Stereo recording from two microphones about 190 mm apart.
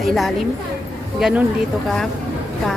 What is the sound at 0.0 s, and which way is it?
Speech, centre (ahead or behind).